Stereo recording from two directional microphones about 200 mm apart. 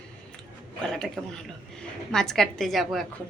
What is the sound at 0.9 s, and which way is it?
A woman's voice, 5° left (ahead or behind).